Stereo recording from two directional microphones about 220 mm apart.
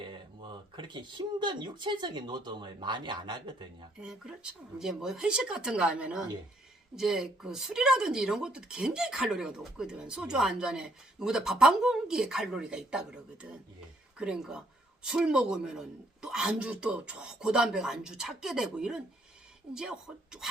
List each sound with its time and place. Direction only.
0.0 s speech: 20° right (ahead or behind)
4.0 s speech: 5° right (ahead or behind)